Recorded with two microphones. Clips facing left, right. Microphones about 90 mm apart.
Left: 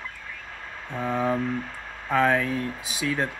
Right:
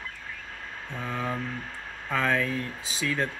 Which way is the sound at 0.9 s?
20° left (ahead or behind).